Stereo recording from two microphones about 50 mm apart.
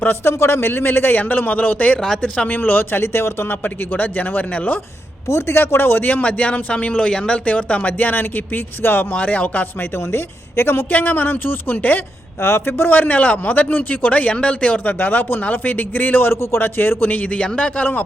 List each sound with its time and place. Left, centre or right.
0.3 s a man's voice: left
2.0 s speech: centre
2.5 s a man's voice: left
3.6 s a man's voice: left
5.3 s a man's voice: left
6.2 s speech: left
9.1 s speech: left
10.6 s a man's voice: left
10.9 s a man's voice: left
12.4 s a man's voice: left
14.9 s a man's voice: left
16.3 s speech: left
16.6 s a man's voice: left
17.3 s speech: left